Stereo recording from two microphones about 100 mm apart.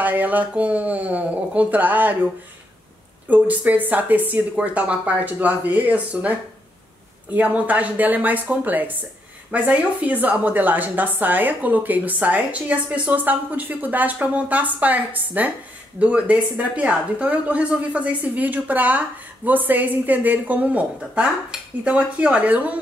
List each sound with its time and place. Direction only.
0.0 s a woman's voice: 15° right (ahead or behind)
3.3 s a woman's voice: 15° right (ahead or behind)
7.3 s a woman's voice: 15° right (ahead or behind)